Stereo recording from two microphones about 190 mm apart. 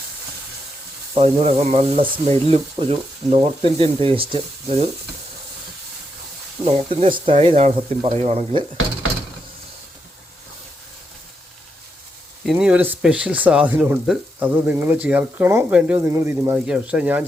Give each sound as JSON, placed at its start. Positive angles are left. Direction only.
{"t": 1.1, "sound": "speech", "side_deg": -30}
{"t": 6.7, "sound": "speech", "side_deg": -30}
{"t": 12.5, "sound": "speech", "side_deg": -5}